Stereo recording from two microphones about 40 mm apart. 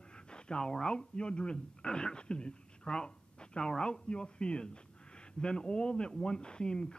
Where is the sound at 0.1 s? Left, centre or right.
Left.